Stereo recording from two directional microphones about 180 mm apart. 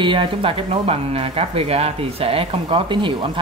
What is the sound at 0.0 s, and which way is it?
Speech, 30° right (ahead or behind).